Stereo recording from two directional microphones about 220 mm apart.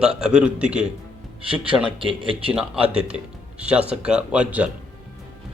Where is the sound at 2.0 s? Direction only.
25° right (ahead or behind).